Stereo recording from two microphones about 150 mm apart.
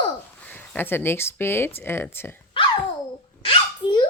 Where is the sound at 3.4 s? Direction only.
30° left (ahead or behind).